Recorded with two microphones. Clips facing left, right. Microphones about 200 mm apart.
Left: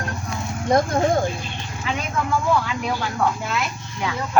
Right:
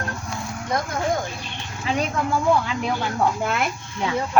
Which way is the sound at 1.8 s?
35° right (ahead or behind).